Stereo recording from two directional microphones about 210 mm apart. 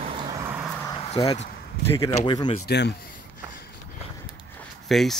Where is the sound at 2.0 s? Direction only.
15° left (ahead or behind).